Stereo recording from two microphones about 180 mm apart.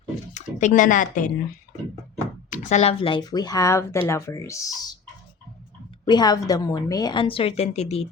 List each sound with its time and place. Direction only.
0.3 s speech: 45° left (ahead or behind)
2.5 s speech: 40° left (ahead or behind); by 4.9 s 20° left (ahead or behind)
6.1 s speech: 25° left (ahead or behind)